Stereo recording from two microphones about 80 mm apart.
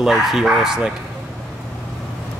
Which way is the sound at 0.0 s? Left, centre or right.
Centre.